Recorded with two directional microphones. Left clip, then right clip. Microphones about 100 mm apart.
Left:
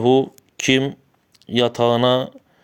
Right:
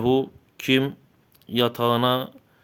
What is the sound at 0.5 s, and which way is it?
Speech, 45° left (ahead or behind).